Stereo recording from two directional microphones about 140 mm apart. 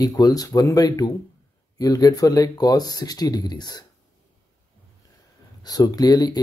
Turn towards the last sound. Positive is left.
turn(degrees=30)  # may be behind; listen again after turning